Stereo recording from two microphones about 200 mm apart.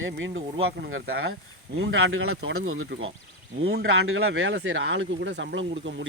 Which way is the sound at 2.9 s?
75° right (ahead or behind).